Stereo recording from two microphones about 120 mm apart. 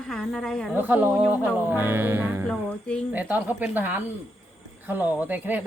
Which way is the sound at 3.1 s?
15° right (ahead or behind).